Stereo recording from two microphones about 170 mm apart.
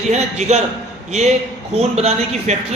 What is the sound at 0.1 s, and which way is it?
Speech, 40° right (ahead or behind).